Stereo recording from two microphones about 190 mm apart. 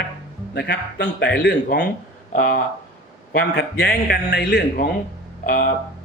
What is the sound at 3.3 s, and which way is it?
A man's voice, 60° left (ahead or behind).